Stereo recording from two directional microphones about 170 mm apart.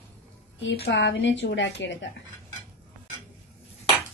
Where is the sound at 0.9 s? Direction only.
90° left.